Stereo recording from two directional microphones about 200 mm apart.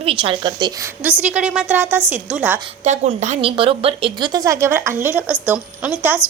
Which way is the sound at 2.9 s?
35° right (ahead or behind).